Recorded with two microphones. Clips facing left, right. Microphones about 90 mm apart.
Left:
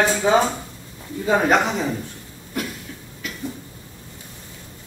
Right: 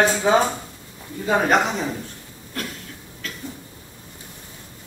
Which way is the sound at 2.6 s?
15° left (ahead or behind).